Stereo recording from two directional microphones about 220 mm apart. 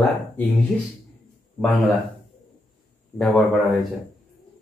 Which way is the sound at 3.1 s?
Centre (ahead or behind).